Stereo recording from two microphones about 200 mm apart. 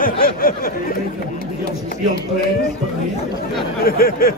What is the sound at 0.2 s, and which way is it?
Speech, 45° left (ahead or behind).